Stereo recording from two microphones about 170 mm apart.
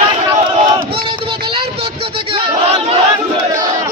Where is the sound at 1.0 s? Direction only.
30° right (ahead or behind).